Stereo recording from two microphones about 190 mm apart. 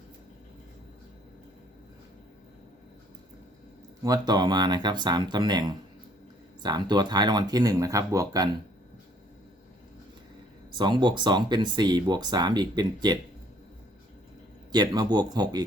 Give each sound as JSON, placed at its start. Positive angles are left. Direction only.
{"t": 4.0, "sound": "speech", "side_deg": -20}
{"t": 10.8, "sound": "speech", "side_deg": -25}
{"t": 14.7, "sound": "speech", "side_deg": -20}